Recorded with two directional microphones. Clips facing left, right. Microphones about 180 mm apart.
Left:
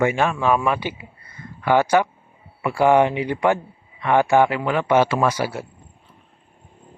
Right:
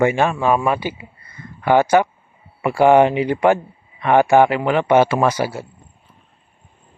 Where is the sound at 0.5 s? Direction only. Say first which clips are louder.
Right 2 dB; 25° right (ahead or behind).